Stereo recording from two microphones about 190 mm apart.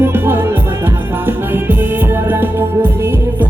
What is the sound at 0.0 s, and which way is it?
Music, 10° right (ahead or behind).